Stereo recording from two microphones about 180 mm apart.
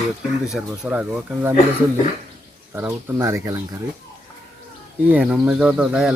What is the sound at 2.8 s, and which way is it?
Speech, 15° right (ahead or behind).